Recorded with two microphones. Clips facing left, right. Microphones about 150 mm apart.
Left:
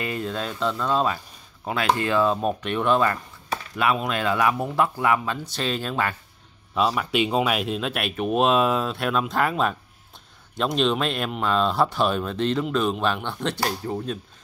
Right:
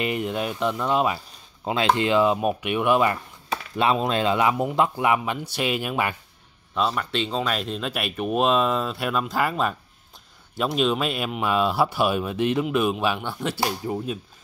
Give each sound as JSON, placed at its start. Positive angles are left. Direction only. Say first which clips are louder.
{"t": 0.0, "sound": "speech", "louder": "right 3 dB", "side_deg": -20}
{"t": 3.7, "sound": "speech", "louder": "right 2 dB", "side_deg": -25}
{"t": 6.7, "sound": "speech", "louder": "left 2 dB", "side_deg": 5}